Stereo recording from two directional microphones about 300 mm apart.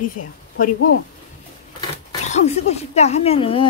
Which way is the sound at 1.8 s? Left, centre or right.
Left.